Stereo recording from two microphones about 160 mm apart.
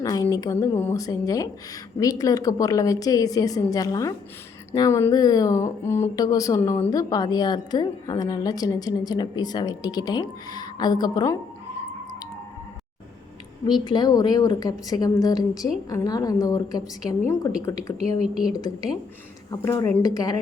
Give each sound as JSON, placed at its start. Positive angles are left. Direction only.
{"t": 0.0, "sound": "speech", "side_deg": 25}
{"t": 13.7, "sound": "speech", "side_deg": 25}
{"t": 18.2, "sound": "a woman's voice", "side_deg": -5}
{"t": 19.5, "sound": "speech", "side_deg": 20}